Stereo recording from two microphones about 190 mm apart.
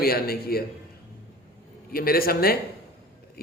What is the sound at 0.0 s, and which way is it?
Speech, 55° left (ahead or behind).